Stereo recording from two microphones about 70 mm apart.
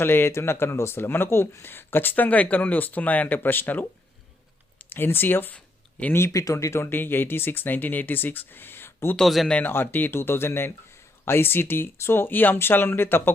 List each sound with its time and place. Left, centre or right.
0.0 s speech: left
4.9 s speech: left
5.5 s a sound: centre
6.3 s speech: left
6.9 s speech: left
9.1 s speech: centre
9.6 s speech: left